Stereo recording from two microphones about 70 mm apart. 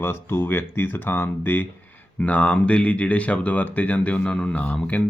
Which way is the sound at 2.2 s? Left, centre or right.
Centre.